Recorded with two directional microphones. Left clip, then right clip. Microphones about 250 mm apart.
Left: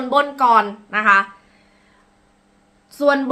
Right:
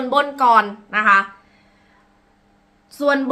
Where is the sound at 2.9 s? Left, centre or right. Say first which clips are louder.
Left 2 dB; centre.